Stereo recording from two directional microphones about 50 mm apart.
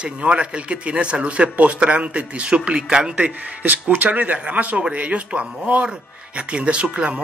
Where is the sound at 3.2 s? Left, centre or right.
Right.